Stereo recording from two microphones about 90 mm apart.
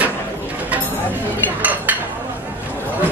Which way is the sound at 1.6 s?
20° right (ahead or behind).